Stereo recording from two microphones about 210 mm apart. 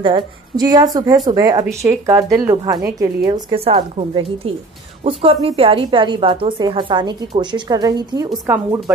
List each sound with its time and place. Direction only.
0.0 s a woman's voice: 20° right (ahead or behind)